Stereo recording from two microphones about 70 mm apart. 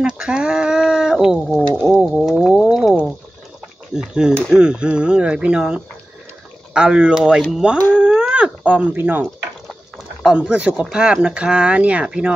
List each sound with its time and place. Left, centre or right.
0.0 s speech: centre
2.0 s a sound: centre
3.9 s speech: centre
7.7 s speech: left
8.0 s dog: centre
10.2 s speech: centre